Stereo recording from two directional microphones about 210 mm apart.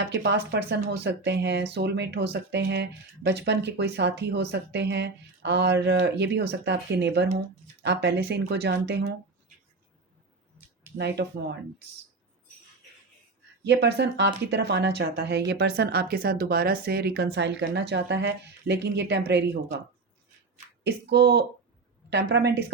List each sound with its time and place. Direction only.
0.0 s speech: 55° right (ahead or behind)
10.9 s speech: 50° right (ahead or behind)
13.7 s speech: 55° right (ahead or behind)
20.8 s speech: 50° right (ahead or behind)